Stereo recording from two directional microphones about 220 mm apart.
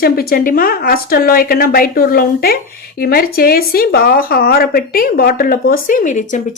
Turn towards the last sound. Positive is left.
turn(degrees=35)  # may be behind; listen again after turning